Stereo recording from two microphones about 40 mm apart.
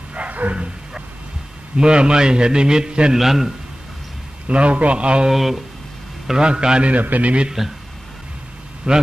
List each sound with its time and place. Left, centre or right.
0.1 s bow-wow: right
1.8 s a man's voice: right
3.2 s a man's voice: centre
4.5 s a man's voice: right
5.3 s speech: centre
6.4 s a man's voice: right
6.9 s a man's voice: right
7.6 s speech: centre
8.9 s a man's voice: right